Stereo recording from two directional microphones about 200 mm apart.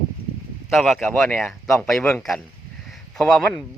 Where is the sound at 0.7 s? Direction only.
Centre (ahead or behind).